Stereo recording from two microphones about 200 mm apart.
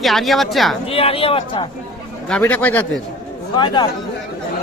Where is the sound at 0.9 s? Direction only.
30° left (ahead or behind).